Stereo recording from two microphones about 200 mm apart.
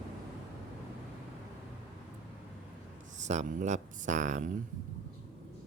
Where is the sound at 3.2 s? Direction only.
35° right (ahead or behind).